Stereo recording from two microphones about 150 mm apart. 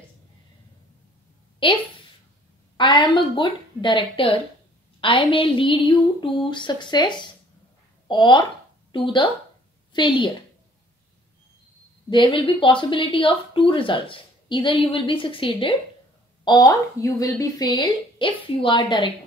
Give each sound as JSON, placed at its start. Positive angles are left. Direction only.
{"t": 1.6, "sound": "speech", "side_deg": 35}
{"t": 2.8, "sound": "a woman's voice", "side_deg": 30}
{"t": 12.1, "sound": "a woman's voice", "side_deg": 35}